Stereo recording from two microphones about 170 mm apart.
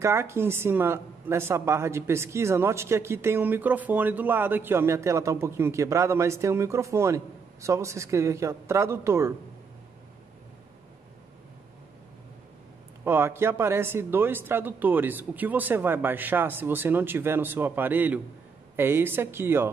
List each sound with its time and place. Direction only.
0.0 s a woman's voice: 15° right (ahead or behind)
13.0 s a woman's voice: 15° right (ahead or behind)